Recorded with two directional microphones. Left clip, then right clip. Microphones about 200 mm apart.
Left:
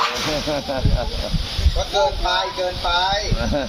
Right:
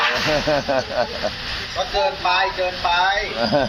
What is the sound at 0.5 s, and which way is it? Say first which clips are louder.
Speech: right 4 dB; 10° right (ahead or behind).